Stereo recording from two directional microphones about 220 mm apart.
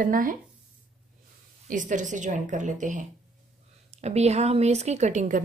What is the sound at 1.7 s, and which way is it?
Speech, 35° right (ahead or behind).